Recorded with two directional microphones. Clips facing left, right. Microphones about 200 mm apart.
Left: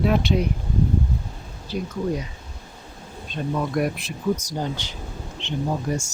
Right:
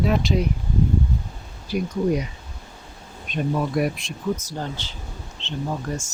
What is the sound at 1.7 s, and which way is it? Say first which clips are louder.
Speech: right 4 dB; 10° right (ahead or behind).